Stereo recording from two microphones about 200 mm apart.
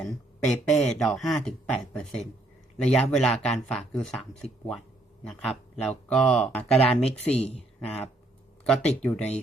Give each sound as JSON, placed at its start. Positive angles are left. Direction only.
{"t": 0.0, "sound": "speech", "side_deg": 5}
{"t": 7.0, "sound": "speech", "side_deg": 30}
{"t": 8.6, "sound": "speech", "side_deg": 5}